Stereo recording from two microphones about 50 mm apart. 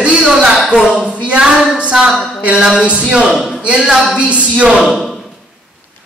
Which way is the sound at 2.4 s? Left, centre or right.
Centre.